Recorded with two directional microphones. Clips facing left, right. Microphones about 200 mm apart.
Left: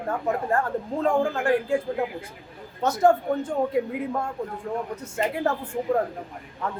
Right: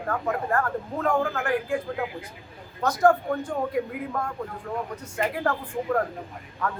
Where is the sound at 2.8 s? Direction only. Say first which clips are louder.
Left 1 dB; 25° left (ahead or behind).